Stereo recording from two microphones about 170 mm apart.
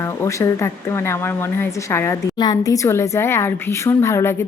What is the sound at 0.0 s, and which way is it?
Speech, 15° left (ahead or behind).